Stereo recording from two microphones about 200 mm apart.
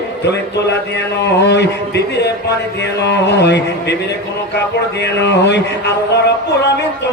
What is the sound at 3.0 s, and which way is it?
Male singing, 60° left (ahead or behind).